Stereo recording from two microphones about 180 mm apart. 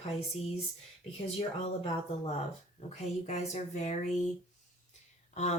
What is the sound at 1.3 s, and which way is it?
Speech, 35° left (ahead or behind).